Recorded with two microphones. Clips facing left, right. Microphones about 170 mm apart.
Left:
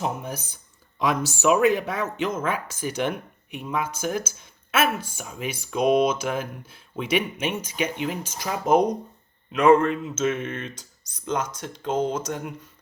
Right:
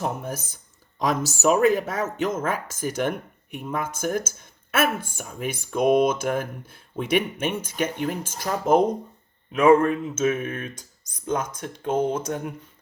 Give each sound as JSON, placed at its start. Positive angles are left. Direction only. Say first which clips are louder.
{"t": 0.0, "sound": "speech", "louder": "even", "side_deg": -50}